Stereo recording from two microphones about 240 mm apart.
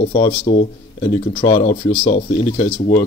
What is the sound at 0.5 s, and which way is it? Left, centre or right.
Speech, left.